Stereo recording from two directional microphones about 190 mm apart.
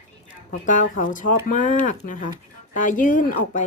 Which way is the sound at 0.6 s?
40° left (ahead or behind).